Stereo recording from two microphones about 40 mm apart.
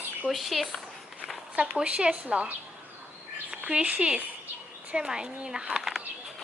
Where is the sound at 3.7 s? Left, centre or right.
Right.